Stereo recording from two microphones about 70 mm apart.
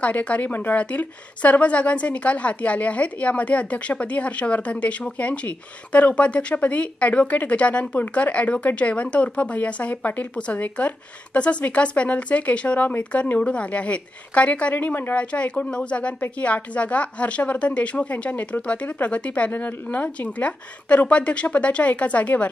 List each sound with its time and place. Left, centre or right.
0.0 s speech: centre